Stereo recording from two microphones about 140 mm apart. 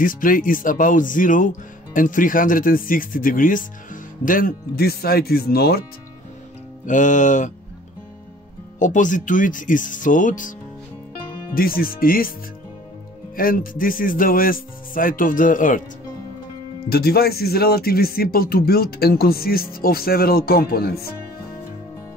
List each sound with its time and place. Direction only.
0.0 s speech: 75° left (ahead or behind)
6.9 s music: 65° left (ahead or behind)
8.7 s speech: 65° left (ahead or behind)
11.5 s speech: 90° left
13.4 s speech: 85° left; by 15.8 s 70° left (ahead or behind)
16.9 s speech: 90° left